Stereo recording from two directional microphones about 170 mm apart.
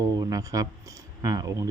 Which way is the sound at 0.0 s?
20° right (ahead or behind).